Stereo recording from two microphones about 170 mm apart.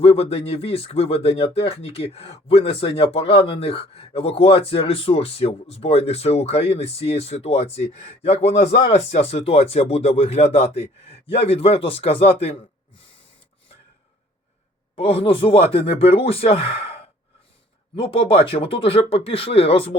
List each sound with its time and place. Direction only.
0.0 s speech: 35° left (ahead or behind)
14.9 s speech: 35° left (ahead or behind)